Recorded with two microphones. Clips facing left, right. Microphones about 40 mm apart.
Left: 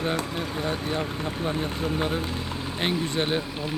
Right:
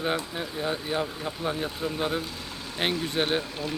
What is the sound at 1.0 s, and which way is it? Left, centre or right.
Speech, centre.